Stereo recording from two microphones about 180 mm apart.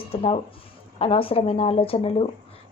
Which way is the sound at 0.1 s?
30° left (ahead or behind).